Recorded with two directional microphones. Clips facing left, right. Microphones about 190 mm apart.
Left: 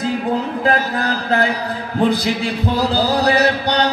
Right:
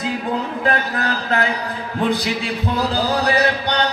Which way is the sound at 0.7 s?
35° left (ahead or behind).